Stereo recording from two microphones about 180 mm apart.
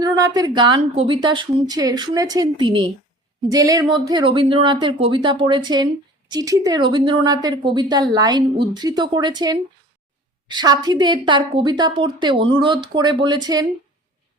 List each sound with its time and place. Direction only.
0.0 s a woman's voice: 20° right (ahead or behind)